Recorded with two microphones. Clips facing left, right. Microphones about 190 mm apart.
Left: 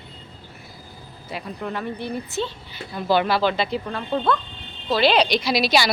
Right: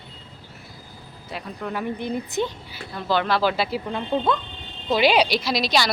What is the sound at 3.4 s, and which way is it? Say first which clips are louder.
Speech: left 1 dB; 5° right (ahead or behind).